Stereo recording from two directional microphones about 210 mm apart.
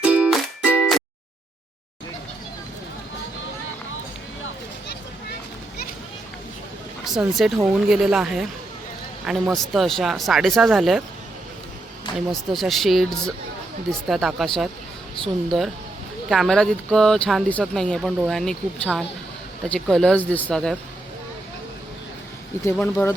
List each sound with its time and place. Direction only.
0.0 s music: 5° right (ahead or behind)
7.0 s speech: centre (ahead or behind)
12.3 s speech: centre (ahead or behind)
14.1 s speech: centre (ahead or behind)
22.6 s speech: 10° left (ahead or behind)